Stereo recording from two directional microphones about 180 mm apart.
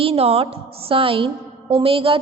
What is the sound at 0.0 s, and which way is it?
A woman's voice, 30° right (ahead or behind).